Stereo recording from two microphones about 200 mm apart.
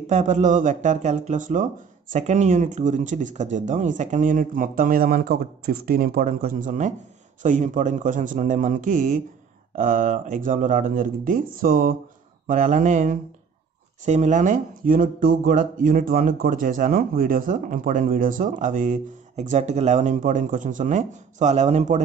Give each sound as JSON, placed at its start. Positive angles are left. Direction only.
{"t": 0.0, "sound": "speech", "side_deg": -35}